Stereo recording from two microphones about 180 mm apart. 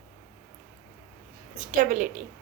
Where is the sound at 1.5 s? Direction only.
45° right (ahead or behind).